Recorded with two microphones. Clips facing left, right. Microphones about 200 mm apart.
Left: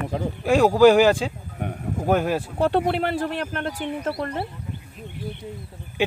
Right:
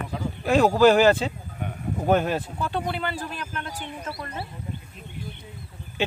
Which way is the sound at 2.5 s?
65° left (ahead or behind).